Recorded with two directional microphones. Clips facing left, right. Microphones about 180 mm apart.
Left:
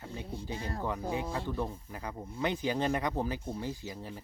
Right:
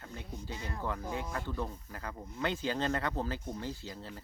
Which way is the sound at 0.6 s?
35° left (ahead or behind).